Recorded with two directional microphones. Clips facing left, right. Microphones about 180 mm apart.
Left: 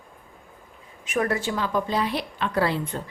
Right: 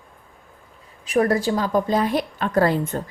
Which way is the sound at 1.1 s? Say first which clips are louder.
Right 6 dB; 35° right (ahead or behind).